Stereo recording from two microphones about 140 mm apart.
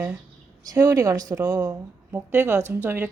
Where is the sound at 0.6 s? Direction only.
25° right (ahead or behind).